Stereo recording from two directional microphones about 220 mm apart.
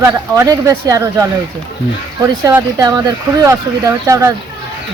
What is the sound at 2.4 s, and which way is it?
Speech, 15° right (ahead or behind).